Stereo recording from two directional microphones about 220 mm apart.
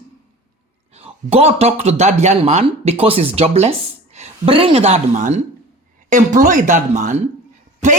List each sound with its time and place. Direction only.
0.9 s a woman's voice: 25° right (ahead or behind)